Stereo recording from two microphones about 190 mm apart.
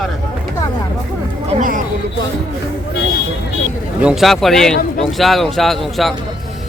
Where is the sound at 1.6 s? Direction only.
45° right (ahead or behind).